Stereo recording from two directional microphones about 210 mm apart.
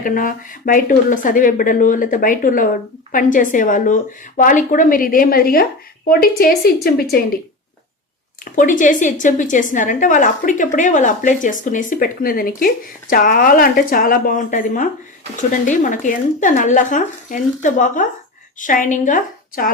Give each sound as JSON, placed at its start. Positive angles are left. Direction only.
{"t": 0.0, "sound": "a woman's voice", "side_deg": 40}
{"t": 8.5, "sound": "a woman's voice", "side_deg": 40}